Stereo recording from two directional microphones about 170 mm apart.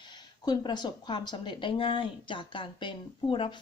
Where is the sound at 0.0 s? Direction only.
25° left (ahead or behind).